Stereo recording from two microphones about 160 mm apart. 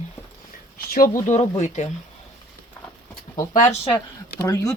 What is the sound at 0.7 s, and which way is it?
Speech, 70° left (ahead or behind).